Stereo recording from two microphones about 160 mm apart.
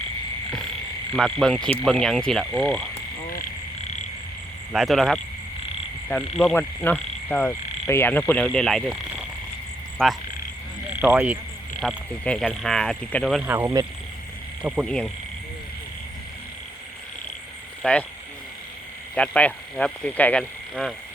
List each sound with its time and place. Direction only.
1.1 s speech: 5° left (ahead or behind)
4.7 s speech: centre (ahead or behind)
6.4 s frog: 10° left (ahead or behind)
8.3 s speech: 5° left (ahead or behind)
11.0 s speech: 10° right (ahead or behind)
11.8 s speech: 5° left (ahead or behind)
13.4 s speech: 15° right (ahead or behind)
14.8 s speech: 5° left (ahead or behind)
17.8 s speech: 10° left (ahead or behind)
19.1 s speech: 10° left (ahead or behind)